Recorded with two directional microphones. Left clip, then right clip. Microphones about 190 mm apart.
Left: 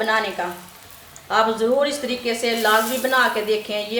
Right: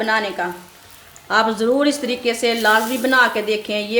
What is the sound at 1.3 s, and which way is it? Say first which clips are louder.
Speech: right 2 dB; 55° right (ahead or behind).